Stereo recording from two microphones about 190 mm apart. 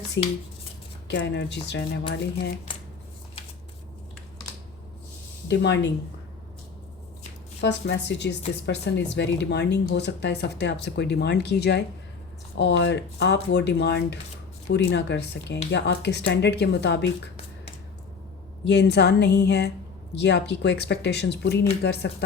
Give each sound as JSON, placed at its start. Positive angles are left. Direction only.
{"t": 0.2, "sound": "a woman's voice", "side_deg": 65}
{"t": 5.5, "sound": "a woman's voice", "side_deg": 65}
{"t": 7.6, "sound": "speech", "side_deg": 65}
{"t": 18.6, "sound": "speech", "side_deg": 65}